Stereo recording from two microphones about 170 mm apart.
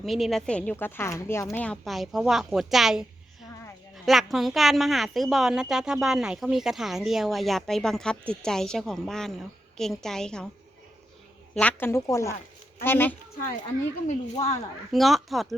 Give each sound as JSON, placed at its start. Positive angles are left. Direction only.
{"t": 0.0, "sound": "a woman's voice", "side_deg": 0}
{"t": 11.5, "sound": "speech", "side_deg": 10}
{"t": 14.3, "sound": "a woman's voice", "side_deg": 40}
{"t": 14.9, "sound": "a woman's voice", "side_deg": 0}